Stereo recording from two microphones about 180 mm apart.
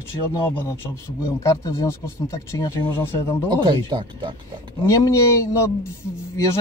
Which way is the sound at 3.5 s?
25° right (ahead or behind).